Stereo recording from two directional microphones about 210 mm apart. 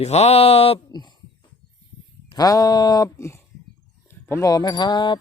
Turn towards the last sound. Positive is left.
turn(degrees=20)  # may be behind; listen again after turning